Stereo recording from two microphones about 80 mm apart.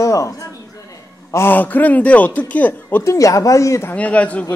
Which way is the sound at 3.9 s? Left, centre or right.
Centre.